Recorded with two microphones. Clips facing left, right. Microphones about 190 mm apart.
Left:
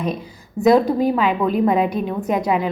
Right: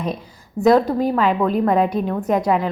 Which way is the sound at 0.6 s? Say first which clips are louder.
Left 1 dB; 10° left (ahead or behind).